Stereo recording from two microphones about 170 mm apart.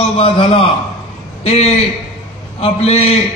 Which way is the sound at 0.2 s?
35° left (ahead or behind).